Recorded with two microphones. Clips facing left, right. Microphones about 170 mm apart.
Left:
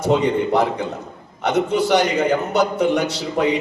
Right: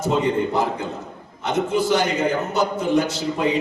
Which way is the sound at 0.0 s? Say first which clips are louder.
Left 3 dB; 65° left (ahead or behind).